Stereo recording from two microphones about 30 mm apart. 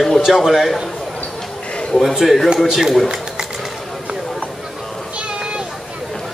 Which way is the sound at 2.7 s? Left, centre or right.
Centre.